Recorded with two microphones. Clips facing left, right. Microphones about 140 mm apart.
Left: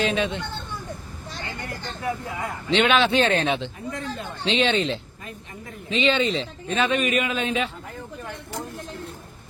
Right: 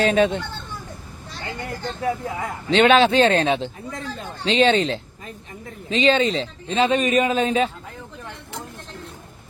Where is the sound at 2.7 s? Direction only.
40° right (ahead or behind).